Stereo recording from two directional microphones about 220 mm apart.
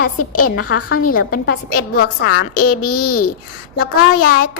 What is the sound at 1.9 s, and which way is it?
A woman's voice, 50° left (ahead or behind).